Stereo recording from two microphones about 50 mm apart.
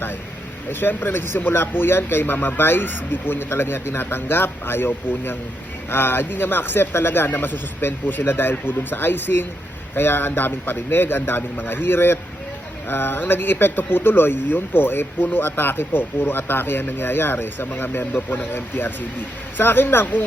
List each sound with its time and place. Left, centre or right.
0.7 s speech: left